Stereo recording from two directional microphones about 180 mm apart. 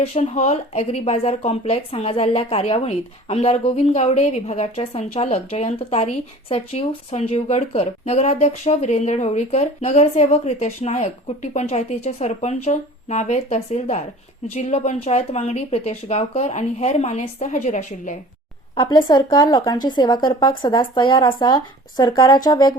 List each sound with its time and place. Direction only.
0.0 s speech: 35° left (ahead or behind)
18.7 s speech: 30° left (ahead or behind)